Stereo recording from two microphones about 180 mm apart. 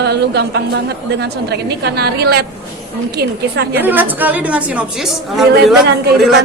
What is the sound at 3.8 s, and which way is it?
A woman's voice, 10° right (ahead or behind).